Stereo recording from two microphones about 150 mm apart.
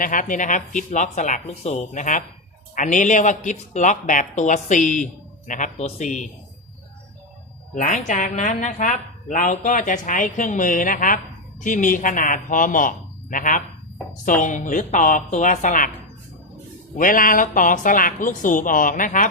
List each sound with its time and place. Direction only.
0.0 s a woman's voice: 65° left (ahead or behind)
7.8 s a woman's voice: 55° left (ahead or behind)
17.0 s a woman's voice: 65° left (ahead or behind)